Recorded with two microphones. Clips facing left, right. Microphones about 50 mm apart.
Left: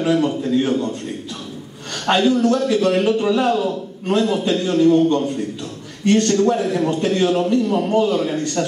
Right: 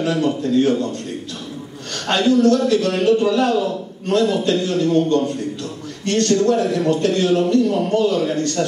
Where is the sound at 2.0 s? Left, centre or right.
Centre.